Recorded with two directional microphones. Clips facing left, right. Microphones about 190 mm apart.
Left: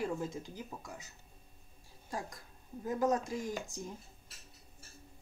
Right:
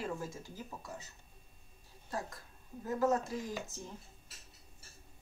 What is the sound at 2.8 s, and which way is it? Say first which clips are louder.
Speech: even; 15° left (ahead or behind).